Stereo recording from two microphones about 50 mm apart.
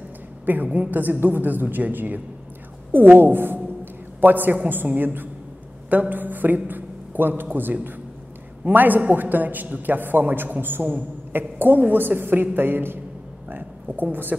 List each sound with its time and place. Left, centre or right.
0.5 s a man's voice: right
10.8 s a woman's voice: right
11.3 s a woman's voice: right
13.5 s a sound: right